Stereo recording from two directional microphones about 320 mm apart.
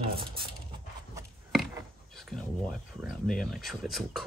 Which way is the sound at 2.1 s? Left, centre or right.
Centre.